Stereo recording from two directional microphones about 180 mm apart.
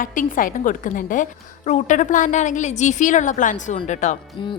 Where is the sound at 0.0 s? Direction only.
50° left (ahead or behind).